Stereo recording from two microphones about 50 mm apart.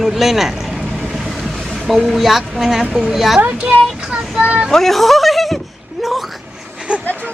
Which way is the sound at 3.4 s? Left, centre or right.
Right.